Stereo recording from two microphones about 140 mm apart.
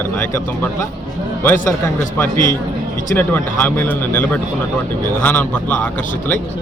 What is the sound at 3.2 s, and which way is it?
Speech, 15° left (ahead or behind).